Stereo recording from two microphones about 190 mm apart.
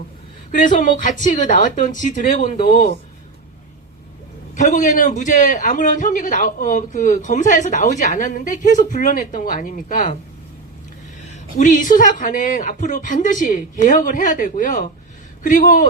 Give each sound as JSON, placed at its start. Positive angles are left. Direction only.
{"t": 0.7, "sound": "speech", "side_deg": 40}
{"t": 4.5, "sound": "a man's voice", "side_deg": 40}
{"t": 11.5, "sound": "speech", "side_deg": 45}